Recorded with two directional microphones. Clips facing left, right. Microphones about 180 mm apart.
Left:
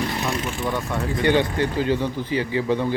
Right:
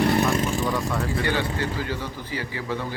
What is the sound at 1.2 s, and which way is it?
A man's voice, 20° left (ahead or behind).